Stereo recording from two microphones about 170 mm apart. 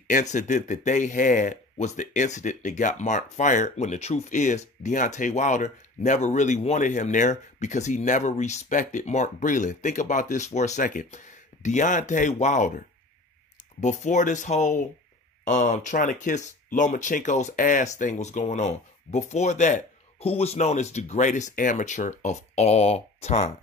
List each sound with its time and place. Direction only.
0.1 s speech: 45° left (ahead or behind)